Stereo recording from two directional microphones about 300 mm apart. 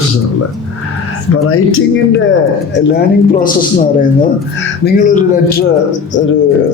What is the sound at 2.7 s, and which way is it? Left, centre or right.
Speech, left.